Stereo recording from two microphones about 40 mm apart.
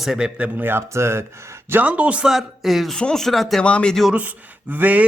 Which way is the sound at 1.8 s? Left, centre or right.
Right.